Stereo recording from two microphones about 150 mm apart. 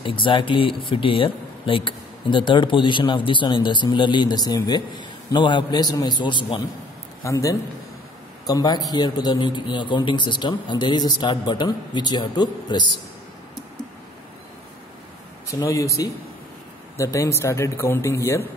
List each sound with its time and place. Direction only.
0.0 s speech: 35° left (ahead or behind)
7.2 s a man's voice: 20° left (ahead or behind)
15.4 s a man's voice: 20° left (ahead or behind)